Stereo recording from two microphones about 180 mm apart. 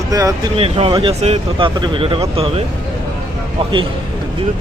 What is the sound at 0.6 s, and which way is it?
Speech, 35° right (ahead or behind).